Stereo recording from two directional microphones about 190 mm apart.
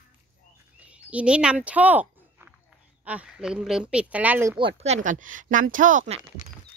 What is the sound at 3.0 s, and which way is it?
Speech, 5° right (ahead or behind).